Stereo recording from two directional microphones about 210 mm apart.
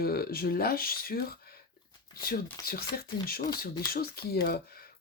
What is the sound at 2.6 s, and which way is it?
Speech, 45° left (ahead or behind).